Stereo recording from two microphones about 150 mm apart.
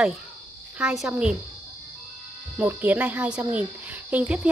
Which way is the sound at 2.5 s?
10° right (ahead or behind).